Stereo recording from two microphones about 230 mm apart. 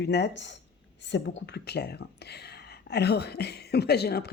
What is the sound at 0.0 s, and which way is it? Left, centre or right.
Speech, left.